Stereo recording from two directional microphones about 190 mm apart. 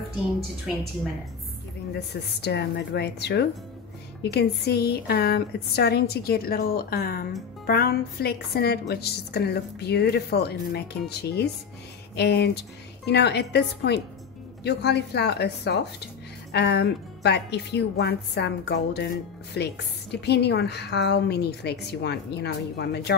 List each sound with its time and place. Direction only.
2.4 s a woman's voice: 60° left (ahead or behind)